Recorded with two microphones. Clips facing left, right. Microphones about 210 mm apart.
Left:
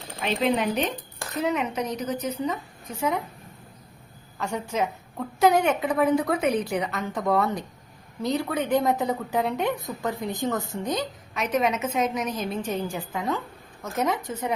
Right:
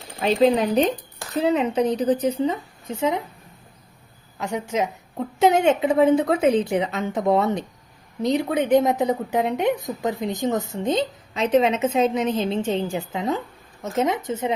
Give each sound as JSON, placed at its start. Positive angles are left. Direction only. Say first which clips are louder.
{"t": 0.2, "sound": "a woman's voice", "louder": "right 6 dB", "side_deg": -35}
{"t": 4.4, "sound": "a woman's voice", "louder": "right 3 dB", "side_deg": -15}